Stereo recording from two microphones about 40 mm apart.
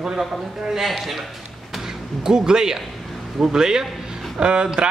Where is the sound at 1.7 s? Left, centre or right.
Centre.